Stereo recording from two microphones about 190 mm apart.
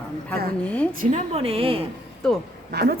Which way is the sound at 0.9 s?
40° right (ahead or behind).